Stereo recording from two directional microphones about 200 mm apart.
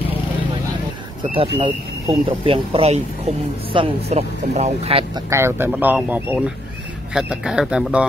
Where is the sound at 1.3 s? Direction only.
25° right (ahead or behind).